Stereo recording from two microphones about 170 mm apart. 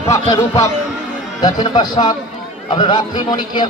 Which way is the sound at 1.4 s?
25° left (ahead or behind).